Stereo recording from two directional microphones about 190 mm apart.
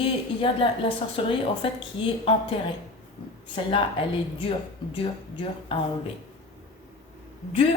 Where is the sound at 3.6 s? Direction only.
25° left (ahead or behind).